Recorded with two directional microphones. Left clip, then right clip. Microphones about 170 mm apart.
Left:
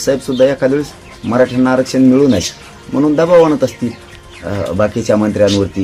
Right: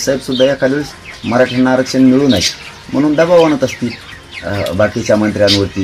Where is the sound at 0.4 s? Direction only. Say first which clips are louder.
Left 1 dB; 25° left (ahead or behind).